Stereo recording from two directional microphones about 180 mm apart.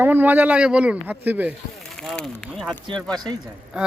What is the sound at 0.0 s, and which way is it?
Speech, 10° right (ahead or behind).